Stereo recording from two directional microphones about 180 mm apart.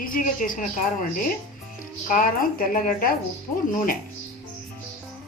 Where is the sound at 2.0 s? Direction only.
50° left (ahead or behind).